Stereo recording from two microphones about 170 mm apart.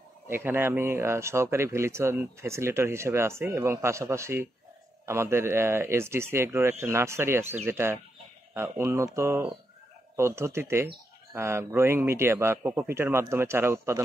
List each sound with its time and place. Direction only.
0.3 s speech: 15° right (ahead or behind)